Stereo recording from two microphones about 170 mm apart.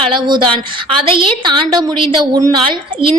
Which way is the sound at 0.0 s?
30° right (ahead or behind).